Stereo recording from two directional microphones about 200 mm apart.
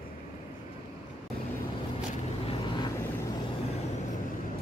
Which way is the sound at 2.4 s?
25° left (ahead or behind).